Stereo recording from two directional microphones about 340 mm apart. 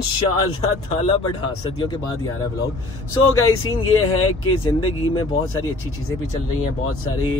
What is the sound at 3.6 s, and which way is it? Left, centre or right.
Speech, left.